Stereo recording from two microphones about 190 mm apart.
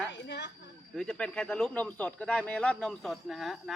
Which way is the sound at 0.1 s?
65° left (ahead or behind).